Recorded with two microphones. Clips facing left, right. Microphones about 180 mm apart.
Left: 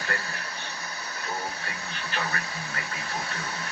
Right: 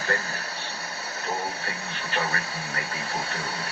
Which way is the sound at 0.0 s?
35° right (ahead or behind).